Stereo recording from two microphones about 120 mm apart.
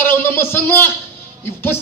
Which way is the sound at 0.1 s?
20° left (ahead or behind).